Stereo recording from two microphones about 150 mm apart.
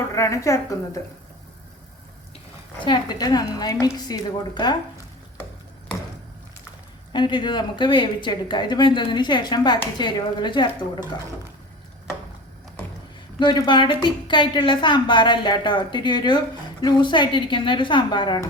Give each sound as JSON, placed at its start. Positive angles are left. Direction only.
{"t": 0.1, "sound": "a woman's voice", "side_deg": 20}
{"t": 2.8, "sound": "a woman's voice", "side_deg": 30}
{"t": 7.1, "sound": "speech", "side_deg": 30}
{"t": 13.4, "sound": "speech", "side_deg": 30}